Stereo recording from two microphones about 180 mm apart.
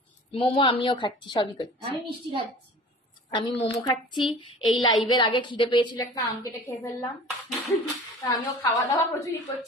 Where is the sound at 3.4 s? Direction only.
25° left (ahead or behind).